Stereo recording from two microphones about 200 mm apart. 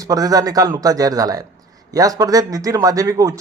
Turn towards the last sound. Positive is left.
turn(degrees=-15)  # may be behind; listen again after turning